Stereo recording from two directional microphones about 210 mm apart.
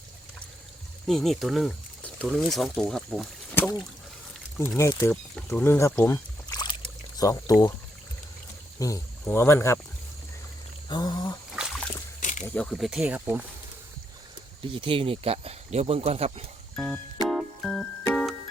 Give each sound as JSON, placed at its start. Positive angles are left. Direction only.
{"t": 1.0, "sound": "speech", "side_deg": 0}
{"t": 4.8, "sound": "speech", "side_deg": 15}
{"t": 8.8, "sound": "speech", "side_deg": 15}
{"t": 10.8, "sound": "speech", "side_deg": 20}
{"t": 11.5, "sound": "splash", "side_deg": -5}
{"t": 12.5, "sound": "speech", "side_deg": 0}
{"t": 14.7, "sound": "speech", "side_deg": -25}
{"t": 16.7, "sound": "music", "side_deg": 5}